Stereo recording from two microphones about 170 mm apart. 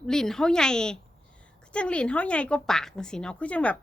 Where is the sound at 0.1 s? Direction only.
5° left (ahead or behind).